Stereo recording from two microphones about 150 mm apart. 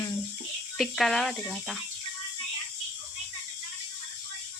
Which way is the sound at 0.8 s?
Centre (ahead or behind).